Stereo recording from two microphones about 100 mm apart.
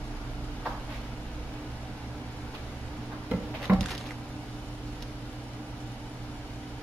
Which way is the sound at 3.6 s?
Centre (ahead or behind).